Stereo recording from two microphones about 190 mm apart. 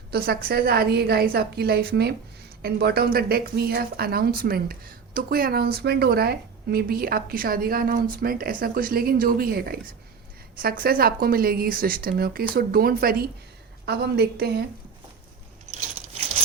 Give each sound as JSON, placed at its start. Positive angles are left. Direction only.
{"t": 0.1, "sound": "a woman's voice", "side_deg": -55}